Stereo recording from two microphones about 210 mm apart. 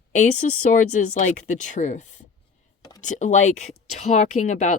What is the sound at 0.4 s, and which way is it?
Speech, 35° left (ahead or behind).